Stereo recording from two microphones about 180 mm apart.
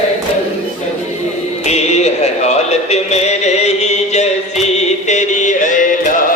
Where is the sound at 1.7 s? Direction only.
40° left (ahead or behind).